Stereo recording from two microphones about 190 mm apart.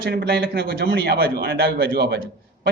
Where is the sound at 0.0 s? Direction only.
55° right (ahead or behind).